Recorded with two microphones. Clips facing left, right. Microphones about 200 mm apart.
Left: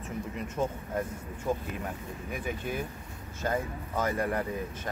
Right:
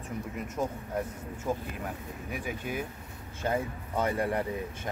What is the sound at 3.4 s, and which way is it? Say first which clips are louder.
Speech: right 1 dB; 25° right (ahead or behind).